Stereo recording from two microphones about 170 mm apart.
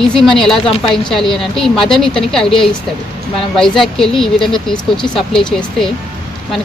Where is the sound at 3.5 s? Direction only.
Centre (ahead or behind).